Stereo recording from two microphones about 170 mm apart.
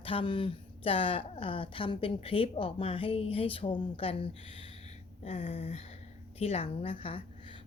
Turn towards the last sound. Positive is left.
turn(degrees=30)  # may be behind; listen again after turning